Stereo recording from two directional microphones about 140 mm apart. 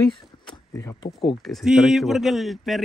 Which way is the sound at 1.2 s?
Centre (ahead or behind).